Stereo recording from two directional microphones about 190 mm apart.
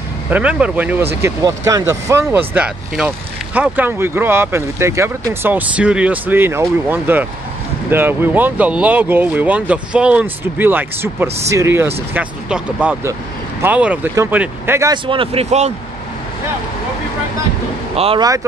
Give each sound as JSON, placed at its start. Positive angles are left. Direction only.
{"t": 0.3, "sound": "speech", "side_deg": -5}
{"t": 15.0, "sound": "speech", "side_deg": -30}
{"t": 17.9, "sound": "speech", "side_deg": -30}